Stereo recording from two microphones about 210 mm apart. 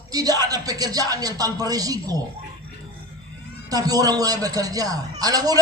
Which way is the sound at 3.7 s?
15° right (ahead or behind).